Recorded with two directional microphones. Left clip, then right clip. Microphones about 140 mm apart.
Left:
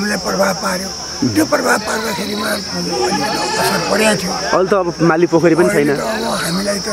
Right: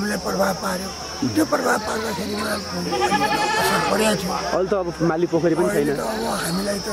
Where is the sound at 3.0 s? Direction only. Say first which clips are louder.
Left 1 dB; 25° right (ahead or behind).